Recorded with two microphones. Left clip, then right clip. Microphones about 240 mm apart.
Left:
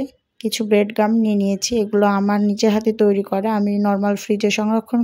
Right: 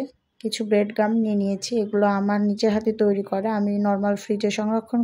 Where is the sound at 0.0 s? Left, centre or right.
Left.